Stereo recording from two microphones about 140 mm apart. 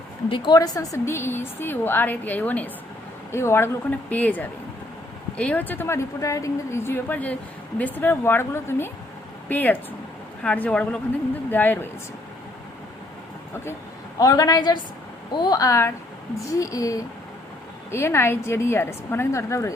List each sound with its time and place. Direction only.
0.3 s a woman's voice: 35° left (ahead or behind); by 11.9 s 15° left (ahead or behind)
14.2 s a woman's voice: 25° left (ahead or behind)